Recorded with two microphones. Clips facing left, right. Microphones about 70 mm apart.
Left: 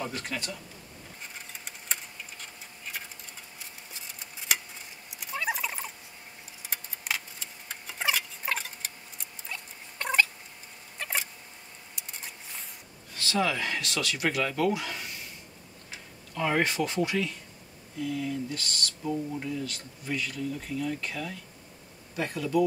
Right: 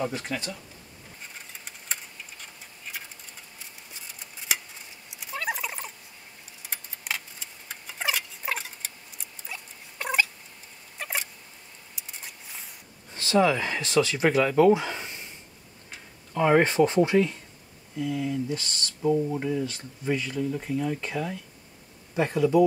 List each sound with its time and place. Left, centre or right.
0.0 s speech: centre
1.2 s tick-tock: centre
3.5 s a sound: centre
13.1 s speech: right
16.3 s speech: right